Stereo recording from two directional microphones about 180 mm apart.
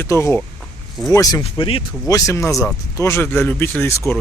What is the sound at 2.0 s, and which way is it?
Speech, 15° left (ahead or behind).